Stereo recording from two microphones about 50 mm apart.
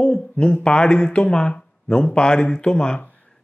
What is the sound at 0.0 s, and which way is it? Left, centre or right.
Speech, left.